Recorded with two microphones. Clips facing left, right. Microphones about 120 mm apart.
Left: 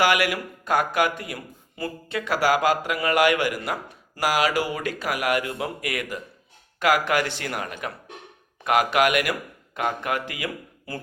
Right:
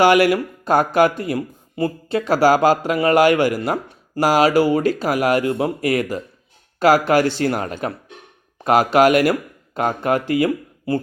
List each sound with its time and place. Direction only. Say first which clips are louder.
0.0 s speech: right 8 dB; 30° right (ahead or behind)